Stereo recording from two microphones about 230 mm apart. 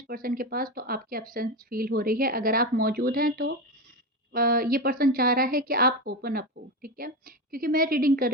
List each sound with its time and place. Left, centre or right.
0.1 s speech: right